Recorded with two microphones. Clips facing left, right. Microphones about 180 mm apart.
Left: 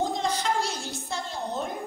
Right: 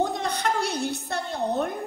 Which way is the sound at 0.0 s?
65° right (ahead or behind).